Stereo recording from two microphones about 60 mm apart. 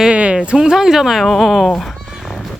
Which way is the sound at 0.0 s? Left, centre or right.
Centre.